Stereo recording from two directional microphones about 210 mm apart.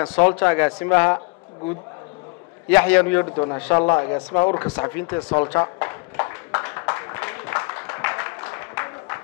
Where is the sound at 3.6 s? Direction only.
10° left (ahead or behind).